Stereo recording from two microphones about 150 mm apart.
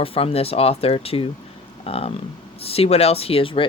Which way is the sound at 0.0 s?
40° left (ahead or behind).